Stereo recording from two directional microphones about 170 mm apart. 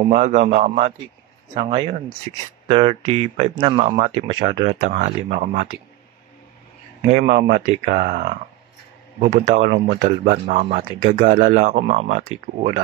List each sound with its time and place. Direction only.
0.1 s speech: 40° right (ahead or behind)
1.6 s speech: 30° right (ahead or behind)
4.3 s speech: 30° right (ahead or behind)
4.6 s speech: 45° right (ahead or behind)
7.3 s speech: 45° right (ahead or behind)